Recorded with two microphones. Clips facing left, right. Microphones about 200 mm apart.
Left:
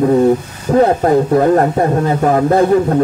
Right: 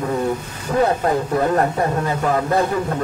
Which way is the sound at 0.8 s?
45° left (ahead or behind).